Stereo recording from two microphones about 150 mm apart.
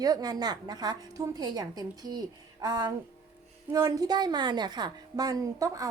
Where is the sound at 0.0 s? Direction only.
25° right (ahead or behind).